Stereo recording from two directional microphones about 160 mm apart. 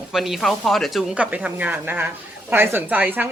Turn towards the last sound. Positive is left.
turn(degrees=-10)  # may be behind; listen again after turning